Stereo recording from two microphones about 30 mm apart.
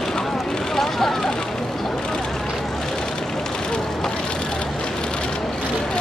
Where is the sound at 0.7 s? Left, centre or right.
Centre.